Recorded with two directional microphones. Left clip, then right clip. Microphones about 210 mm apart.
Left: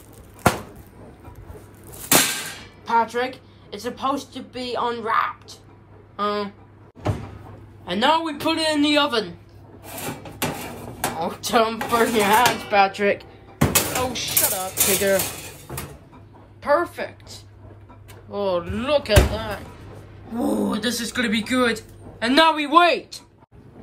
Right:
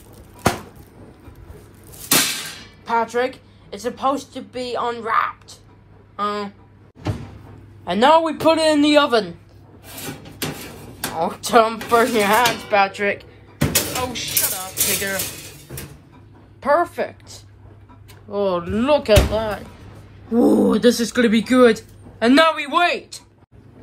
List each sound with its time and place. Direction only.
2.0 s a sound: centre (ahead or behind)
2.8 s speech: 10° left (ahead or behind)
7.8 s speech: 10° left (ahead or behind)
10.4 s a sound: centre (ahead or behind)
11.1 s speech: 10° left (ahead or behind); by 15.2 s 30° left (ahead or behind)
16.6 s a woman's voice: 10° left (ahead or behind)
22.3 s a man's voice: 20° left (ahead or behind)